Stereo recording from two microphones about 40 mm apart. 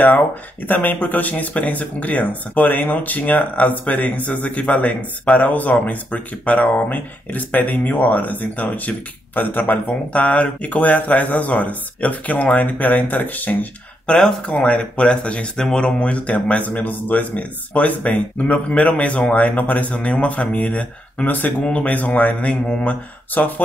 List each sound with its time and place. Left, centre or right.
0.8 s speech: left
5.4 s speech: left
9.7 s speech: left
14.5 s speech: left
15.6 s speech: centre
16.0 s speech: left
21.3 s speech: left